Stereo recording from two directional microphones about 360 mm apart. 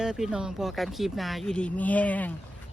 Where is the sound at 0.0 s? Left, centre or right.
Centre.